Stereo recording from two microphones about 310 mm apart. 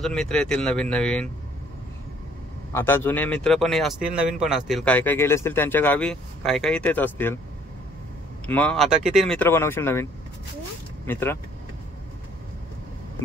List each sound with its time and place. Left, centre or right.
0.0 s speech: centre
2.7 s speech: centre
8.5 s speech: centre
11.1 s speech: centre